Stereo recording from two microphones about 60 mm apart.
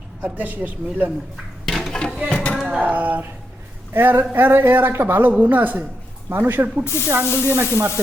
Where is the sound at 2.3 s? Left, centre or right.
Left.